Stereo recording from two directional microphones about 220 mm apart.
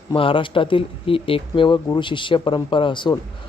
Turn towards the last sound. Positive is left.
turn(degrees=20)  # may be behind; listen again after turning